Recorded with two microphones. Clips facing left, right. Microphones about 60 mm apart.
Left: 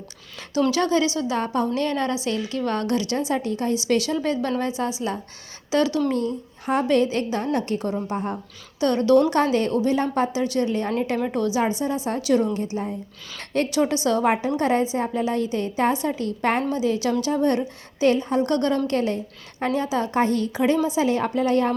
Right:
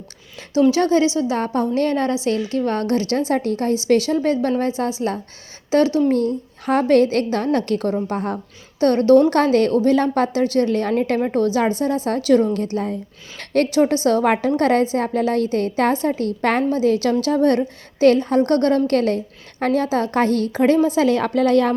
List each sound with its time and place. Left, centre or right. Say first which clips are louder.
0.7 s a woman's voice: right 5 dB; right
4.4 s a woman's voice: right 5 dB; right
4.8 s a woman's voice: right 4 dB; right
6.1 s a woman's voice: right 5 dB; right
8.8 s a woman's voice: right 5 dB; right
9.3 s a woman's voice: right 5 dB; right
11.2 s a woman's voice: right 4 dB; right
13.7 s a woman's voice: right 4 dB; right